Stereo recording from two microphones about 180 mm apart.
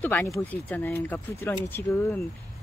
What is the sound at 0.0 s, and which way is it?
Speech, 10° left (ahead or behind).